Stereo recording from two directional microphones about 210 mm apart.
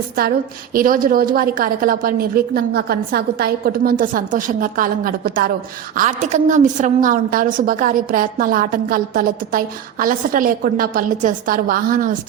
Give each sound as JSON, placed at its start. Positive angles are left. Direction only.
{"t": 0.2, "sound": "a woman's voice", "side_deg": -45}